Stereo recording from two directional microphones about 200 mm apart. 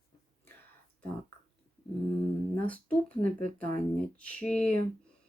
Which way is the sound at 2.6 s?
5° left (ahead or behind).